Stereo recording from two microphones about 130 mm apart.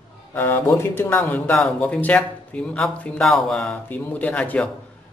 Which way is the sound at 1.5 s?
5° left (ahead or behind).